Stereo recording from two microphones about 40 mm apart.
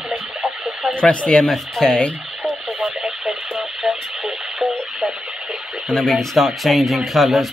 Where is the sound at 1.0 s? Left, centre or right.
Left.